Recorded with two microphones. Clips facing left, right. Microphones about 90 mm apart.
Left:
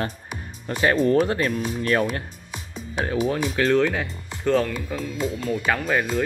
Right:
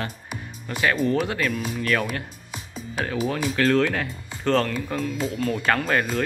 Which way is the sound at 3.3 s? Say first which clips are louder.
Right 1 dB; 20° left (ahead or behind).